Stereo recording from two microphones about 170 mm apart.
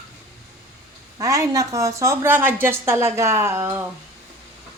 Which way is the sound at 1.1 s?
15° right (ahead or behind).